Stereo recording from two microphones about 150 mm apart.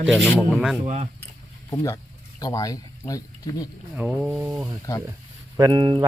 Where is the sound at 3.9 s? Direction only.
10° right (ahead or behind).